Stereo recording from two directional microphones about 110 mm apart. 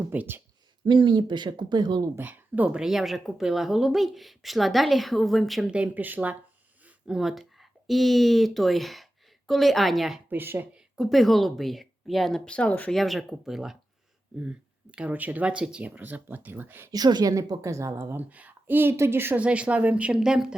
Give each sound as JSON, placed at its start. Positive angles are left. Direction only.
{"t": 0.1, "sound": "speech", "side_deg": -15}
{"t": 0.9, "sound": "speech", "side_deg": -45}
{"t": 2.1, "sound": "speech", "side_deg": -15}
{"t": 10.2, "sound": "a woman's voice", "side_deg": -20}
{"t": 10.9, "sound": "speech", "side_deg": 0}
{"t": 12.9, "sound": "speech", "side_deg": 0}
{"t": 16.9, "sound": "a woman's voice", "side_deg": -40}